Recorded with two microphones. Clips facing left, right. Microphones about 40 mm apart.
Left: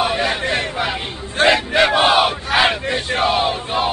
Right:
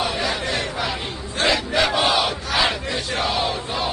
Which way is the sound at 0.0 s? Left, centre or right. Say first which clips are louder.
Left 5 dB; left.